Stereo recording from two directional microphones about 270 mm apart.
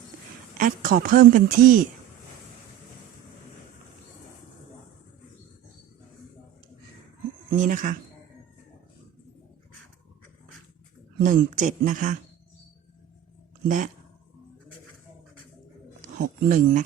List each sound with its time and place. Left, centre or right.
0.5 s a woman's voice: right
7.5 s speech: right
11.2 s speech: right
13.7 s speech: right
16.0 s speech: right